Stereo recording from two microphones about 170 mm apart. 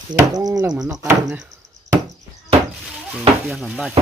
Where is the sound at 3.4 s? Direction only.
Centre (ahead or behind).